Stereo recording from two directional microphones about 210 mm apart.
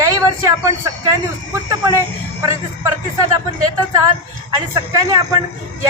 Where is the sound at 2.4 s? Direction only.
15° right (ahead or behind).